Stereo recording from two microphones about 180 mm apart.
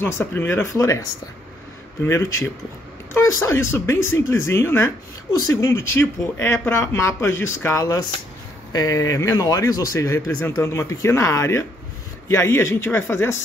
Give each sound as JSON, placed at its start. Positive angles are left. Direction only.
{"t": 0.0, "sound": "speech", "side_deg": 10}
{"t": 2.0, "sound": "speech", "side_deg": 15}